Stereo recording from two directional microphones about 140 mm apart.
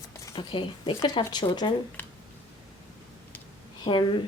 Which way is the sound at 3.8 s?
35° left (ahead or behind).